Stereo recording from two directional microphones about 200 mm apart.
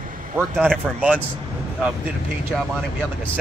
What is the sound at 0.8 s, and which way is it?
Speech, 10° right (ahead or behind).